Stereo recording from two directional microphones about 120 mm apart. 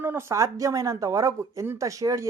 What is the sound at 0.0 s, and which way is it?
Speech, 20° right (ahead or behind).